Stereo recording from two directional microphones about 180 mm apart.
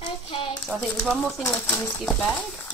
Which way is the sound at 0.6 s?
5° left (ahead or behind).